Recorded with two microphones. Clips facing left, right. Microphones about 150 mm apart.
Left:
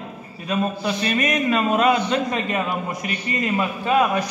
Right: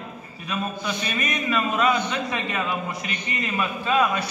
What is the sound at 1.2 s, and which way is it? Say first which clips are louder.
Speech: left 4 dB; 45° left (ahead or behind).